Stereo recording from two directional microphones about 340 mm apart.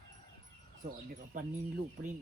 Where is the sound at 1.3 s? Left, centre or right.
Right.